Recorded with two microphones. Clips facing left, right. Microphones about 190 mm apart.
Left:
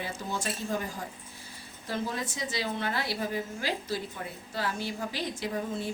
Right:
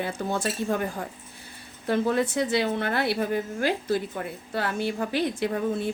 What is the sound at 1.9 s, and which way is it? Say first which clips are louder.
A woman's voice: right 10 dB; 60° right (ahead or behind).